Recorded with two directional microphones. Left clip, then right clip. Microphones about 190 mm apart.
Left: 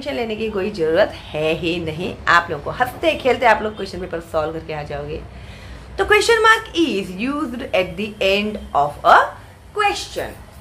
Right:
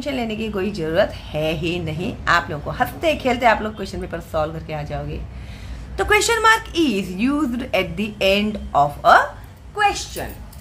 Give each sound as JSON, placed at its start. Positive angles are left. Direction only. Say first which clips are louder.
{"t": 0.0, "sound": "a woman's voice", "louder": "left 2 dB", "side_deg": -30}